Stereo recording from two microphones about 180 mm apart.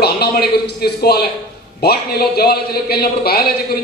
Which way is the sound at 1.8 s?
60° left (ahead or behind).